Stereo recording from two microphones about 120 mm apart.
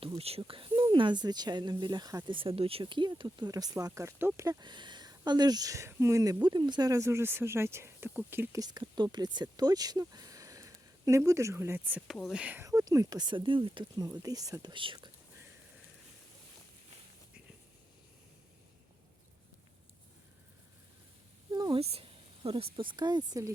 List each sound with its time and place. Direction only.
0.2 s speech: 55° right (ahead or behind); by 2.3 s 35° right (ahead or behind)
2.3 s speech: 50° right (ahead or behind); by 4.4 s 20° right (ahead or behind)
4.4 s speech: 40° right (ahead or behind); by 8.4 s 20° right (ahead or behind)
8.5 s speech: 35° right (ahead or behind); by 12.6 s 10° right (ahead or behind)
12.6 s speech: 30° right (ahead or behind); by 13.8 s 45° right (ahead or behind)
13.9 s speech: 30° right (ahead or behind)
14.7 s speech: 45° right (ahead or behind)
21.5 s a sound: 35° right (ahead or behind)
22.4 s speech: 45° right (ahead or behind)